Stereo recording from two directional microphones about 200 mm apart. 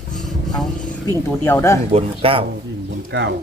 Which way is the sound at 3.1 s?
65° right (ahead or behind).